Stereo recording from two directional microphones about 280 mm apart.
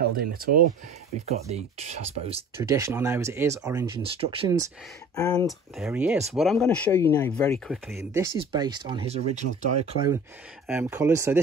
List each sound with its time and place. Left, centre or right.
0.1 s speech: right
2.5 s speech: centre
5.1 s speech: centre
5.8 s speech: centre
8.1 s speech: centre